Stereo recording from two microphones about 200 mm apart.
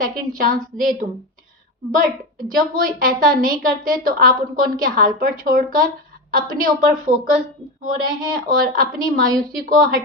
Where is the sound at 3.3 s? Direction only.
45° right (ahead or behind).